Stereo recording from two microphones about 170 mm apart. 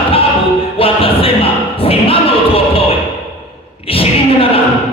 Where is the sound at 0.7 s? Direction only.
35° left (ahead or behind).